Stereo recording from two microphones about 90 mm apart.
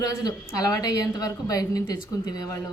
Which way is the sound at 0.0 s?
40° left (ahead or behind).